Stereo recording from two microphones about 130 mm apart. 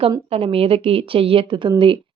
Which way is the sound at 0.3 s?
50° right (ahead or behind).